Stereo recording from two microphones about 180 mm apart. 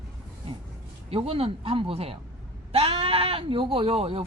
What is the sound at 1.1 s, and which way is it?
Speech, 35° right (ahead or behind).